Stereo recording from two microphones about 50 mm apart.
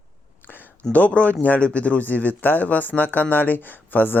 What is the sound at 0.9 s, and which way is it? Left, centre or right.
Speech, left.